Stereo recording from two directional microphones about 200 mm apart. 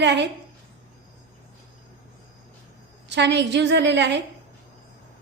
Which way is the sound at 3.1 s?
60° right (ahead or behind).